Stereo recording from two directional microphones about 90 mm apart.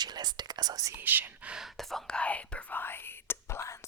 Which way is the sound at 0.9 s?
20° right (ahead or behind).